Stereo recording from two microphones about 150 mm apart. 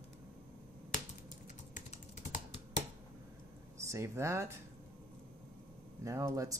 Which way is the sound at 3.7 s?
20° right (ahead or behind).